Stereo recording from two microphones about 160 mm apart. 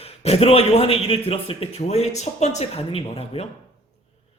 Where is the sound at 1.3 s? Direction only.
35° left (ahead or behind).